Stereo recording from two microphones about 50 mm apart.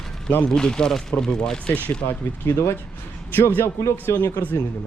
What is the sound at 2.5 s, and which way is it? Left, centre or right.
Speech, left.